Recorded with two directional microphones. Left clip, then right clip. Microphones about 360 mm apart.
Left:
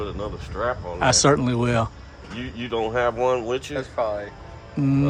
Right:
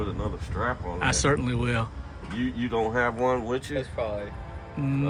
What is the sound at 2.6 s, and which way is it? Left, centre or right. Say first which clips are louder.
Speech: left 3 dB; centre.